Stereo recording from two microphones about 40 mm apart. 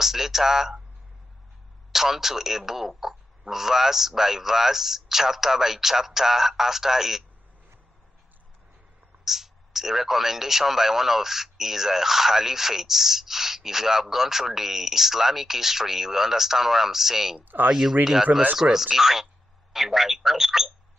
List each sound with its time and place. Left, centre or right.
0.0 s speech: centre
1.9 s speech: centre
9.2 s speech: centre
17.4 s speech: right
18.6 s speech: centre